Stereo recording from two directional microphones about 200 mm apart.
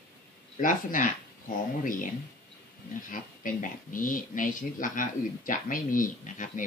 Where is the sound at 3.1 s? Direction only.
40° left (ahead or behind).